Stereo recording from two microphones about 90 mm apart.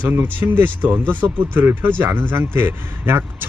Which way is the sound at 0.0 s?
20° right (ahead or behind).